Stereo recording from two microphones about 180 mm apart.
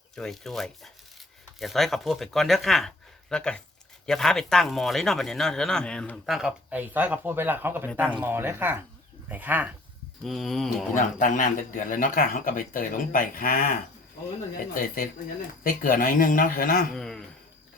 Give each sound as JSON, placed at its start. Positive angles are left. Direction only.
{"t": 0.2, "sound": "a man's voice", "side_deg": 0}
{"t": 10.2, "sound": "a man's voice", "side_deg": 0}
{"t": 10.9, "sound": "speech", "side_deg": 45}
{"t": 16.9, "sound": "a sound", "side_deg": 0}